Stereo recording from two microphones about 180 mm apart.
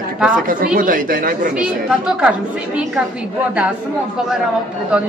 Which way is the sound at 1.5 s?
5° right (ahead or behind).